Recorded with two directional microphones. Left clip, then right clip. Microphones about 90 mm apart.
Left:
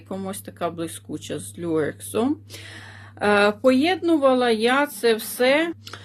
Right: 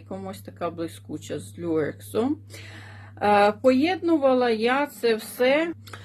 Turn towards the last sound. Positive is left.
turn(degrees=30)  # may be behind; listen again after turning